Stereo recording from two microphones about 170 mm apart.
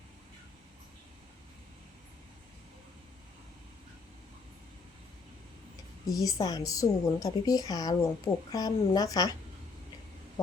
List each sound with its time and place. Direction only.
6.1 s speech: 20° left (ahead or behind)